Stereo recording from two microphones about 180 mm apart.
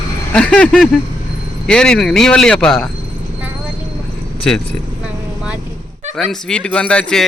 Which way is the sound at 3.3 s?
10° right (ahead or behind).